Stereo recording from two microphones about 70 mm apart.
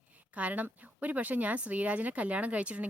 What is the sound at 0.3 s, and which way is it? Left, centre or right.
A woman's voice, right.